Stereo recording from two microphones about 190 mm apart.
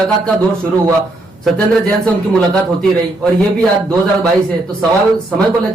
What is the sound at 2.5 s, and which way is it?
Speech, 5° left (ahead or behind).